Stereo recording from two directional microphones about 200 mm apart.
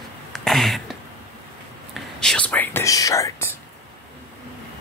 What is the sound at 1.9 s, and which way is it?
Speech, 5° left (ahead or behind).